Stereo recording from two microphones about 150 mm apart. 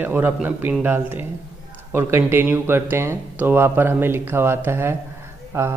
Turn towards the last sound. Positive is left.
turn(degrees=-15)  # may be behind; listen again after turning